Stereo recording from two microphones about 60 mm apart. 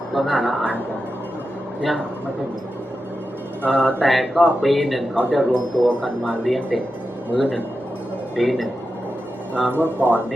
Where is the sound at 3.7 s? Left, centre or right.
Centre.